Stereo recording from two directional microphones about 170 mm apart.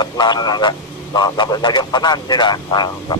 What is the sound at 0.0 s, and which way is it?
A man's voice, 25° left (ahead or behind).